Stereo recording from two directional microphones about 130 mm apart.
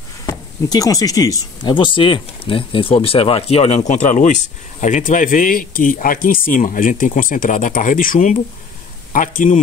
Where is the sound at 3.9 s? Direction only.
70° left (ahead or behind).